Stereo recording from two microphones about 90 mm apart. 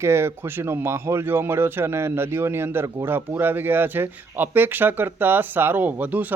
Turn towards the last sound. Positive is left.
turn(degrees=-20)  # may be behind; listen again after turning